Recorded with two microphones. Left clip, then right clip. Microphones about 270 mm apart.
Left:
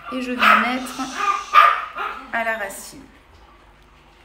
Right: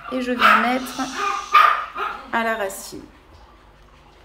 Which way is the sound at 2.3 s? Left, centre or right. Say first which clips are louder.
Right 1 dB; right.